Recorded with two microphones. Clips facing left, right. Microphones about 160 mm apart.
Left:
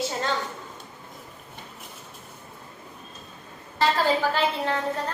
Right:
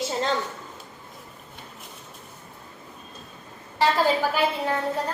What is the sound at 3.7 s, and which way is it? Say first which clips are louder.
A woman's voice: right 1 dB; 10° right (ahead or behind).